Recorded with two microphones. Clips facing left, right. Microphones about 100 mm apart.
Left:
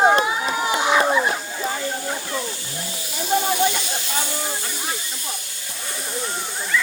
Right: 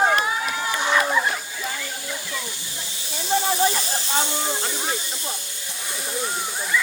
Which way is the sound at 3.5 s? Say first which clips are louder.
Left 1 dB; 35° right (ahead or behind).